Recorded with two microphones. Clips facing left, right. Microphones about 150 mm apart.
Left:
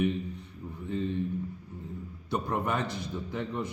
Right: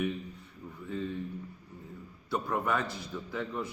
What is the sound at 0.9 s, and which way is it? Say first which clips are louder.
Speech: left 4 dB; 25° left (ahead or behind).